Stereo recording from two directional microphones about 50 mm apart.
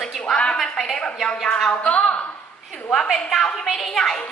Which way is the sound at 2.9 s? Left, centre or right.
Centre.